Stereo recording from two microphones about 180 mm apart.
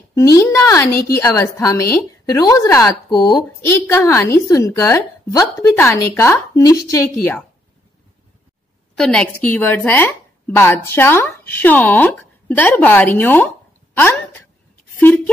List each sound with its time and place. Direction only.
0.1 s a woman's voice: 15° left (ahead or behind)
0.9 s a woman's voice: 55° left (ahead or behind)
1.2 s a woman's voice: 20° left (ahead or behind)
3.8 s a woman's voice: 10° left (ahead or behind)
8.9 s a woman's voice: 5° left (ahead or behind)